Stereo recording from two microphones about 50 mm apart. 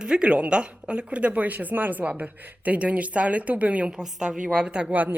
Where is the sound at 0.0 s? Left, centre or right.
Centre.